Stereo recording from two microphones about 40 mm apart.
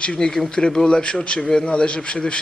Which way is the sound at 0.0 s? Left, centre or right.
Left.